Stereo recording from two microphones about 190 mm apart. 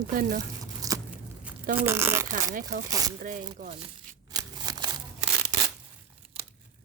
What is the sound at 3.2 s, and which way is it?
Speech, 45° right (ahead or behind).